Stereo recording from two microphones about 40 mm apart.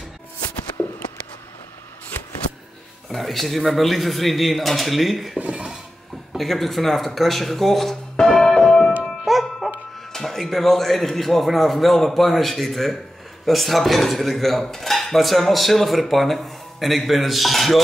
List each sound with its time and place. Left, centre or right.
0.8 s a sound: left
3.1 s a man's voice: centre
5.5 s dishes: right
6.3 s a man's voice: centre
8.2 s music: centre
9.2 s music: centre
10.1 s a man's voice: centre
14.6 s dishes: centre